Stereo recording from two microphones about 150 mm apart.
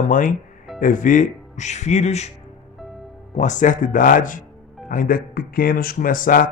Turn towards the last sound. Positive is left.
turn(degrees=65)  # may be behind; listen again after turning